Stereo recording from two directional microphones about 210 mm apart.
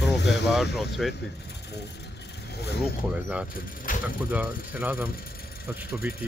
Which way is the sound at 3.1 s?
10° right (ahead or behind).